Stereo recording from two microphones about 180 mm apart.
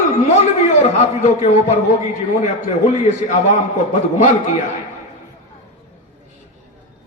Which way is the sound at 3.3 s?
40° left (ahead or behind).